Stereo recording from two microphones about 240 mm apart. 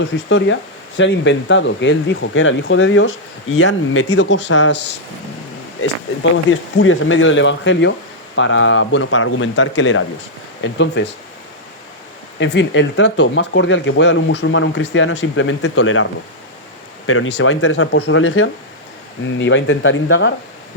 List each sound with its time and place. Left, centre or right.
0.0 s speech: left
6.3 s speech: left
12.4 s speech: left
17.1 s speech: left